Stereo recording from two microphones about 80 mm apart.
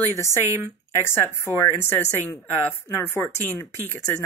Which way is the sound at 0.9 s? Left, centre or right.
Left.